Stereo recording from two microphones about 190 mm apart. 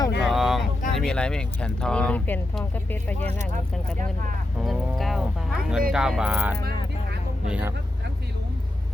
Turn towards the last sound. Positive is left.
turn(degrees=-10)  # may be behind; listen again after turning